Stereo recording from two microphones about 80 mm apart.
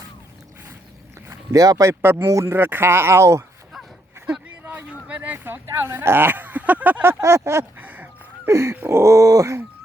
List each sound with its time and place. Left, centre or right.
1.3 s speech: right
5.0 s speech: centre; by 7.6 s right
7.8 s a sound: right
8.4 s speech: right